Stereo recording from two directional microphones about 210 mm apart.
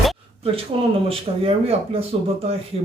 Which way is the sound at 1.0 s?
30° right (ahead or behind).